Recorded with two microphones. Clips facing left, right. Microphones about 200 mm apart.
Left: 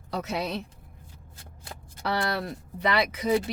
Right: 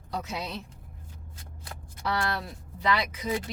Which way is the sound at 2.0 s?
65° left (ahead or behind).